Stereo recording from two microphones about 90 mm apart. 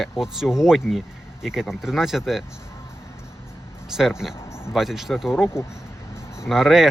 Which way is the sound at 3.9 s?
5° right (ahead or behind).